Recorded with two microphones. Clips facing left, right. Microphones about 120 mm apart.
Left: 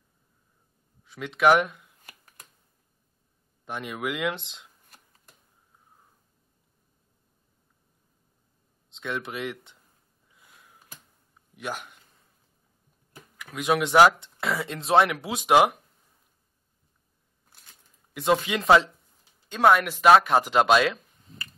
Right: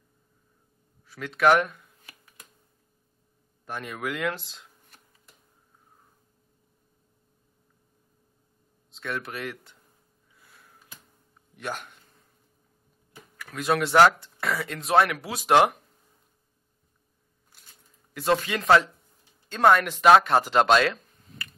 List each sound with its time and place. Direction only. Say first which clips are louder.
1.0 s speech: left 1 dB; 20° left (ahead or behind)
3.6 s speech: left 1 dB; 15° left (ahead or behind)
8.9 s speech: left 1 dB; 20° left (ahead or behind)
10.3 s sniff: even; 15° left (ahead or behind)
11.5 s speech: even; 10° left (ahead or behind)
13.4 s speech: left 1 dB; 15° left (ahead or behind)
15.4 s speech: even; 10° left (ahead or behind)
18.3 s speech: left 1 dB; 15° left (ahead or behind)